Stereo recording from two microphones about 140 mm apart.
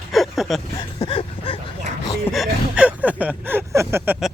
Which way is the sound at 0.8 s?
35° left (ahead or behind).